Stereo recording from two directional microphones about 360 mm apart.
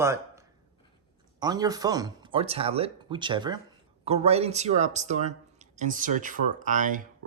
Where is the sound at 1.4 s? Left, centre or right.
Centre.